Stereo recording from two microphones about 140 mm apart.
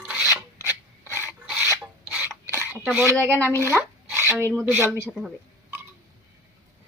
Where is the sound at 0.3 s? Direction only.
10° right (ahead or behind).